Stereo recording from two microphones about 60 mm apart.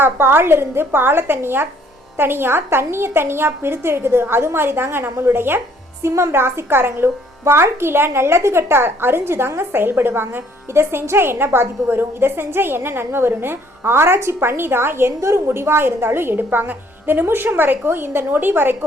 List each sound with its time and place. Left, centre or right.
0.0 s a woman's voice: right